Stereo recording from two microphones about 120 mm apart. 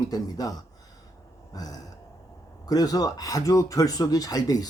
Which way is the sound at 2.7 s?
30° left (ahead or behind).